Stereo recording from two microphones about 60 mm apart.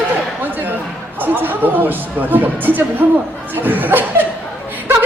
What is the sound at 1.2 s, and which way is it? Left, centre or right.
Speech, right.